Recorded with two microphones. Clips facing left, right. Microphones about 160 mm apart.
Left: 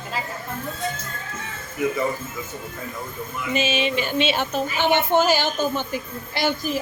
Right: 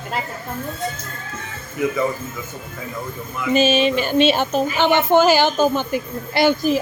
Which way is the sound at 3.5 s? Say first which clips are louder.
Right 7 dB; 40° right (ahead or behind).